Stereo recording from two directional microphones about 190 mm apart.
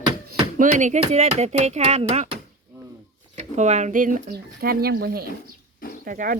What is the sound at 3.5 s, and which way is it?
Speech, 40° right (ahead or behind).